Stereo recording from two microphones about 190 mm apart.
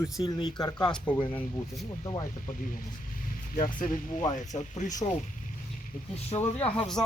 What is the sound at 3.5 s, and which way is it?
Speech, 45° left (ahead or behind).